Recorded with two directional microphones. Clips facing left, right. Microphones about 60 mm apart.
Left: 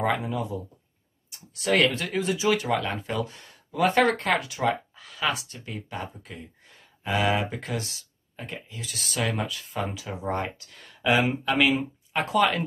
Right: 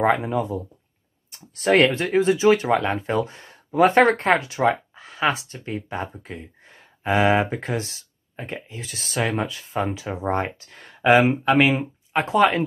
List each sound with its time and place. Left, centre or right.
0.0 s speech: right